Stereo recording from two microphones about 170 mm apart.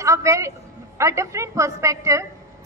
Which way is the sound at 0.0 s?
20° right (ahead or behind).